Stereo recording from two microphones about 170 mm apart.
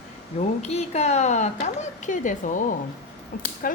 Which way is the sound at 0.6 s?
40° left (ahead or behind).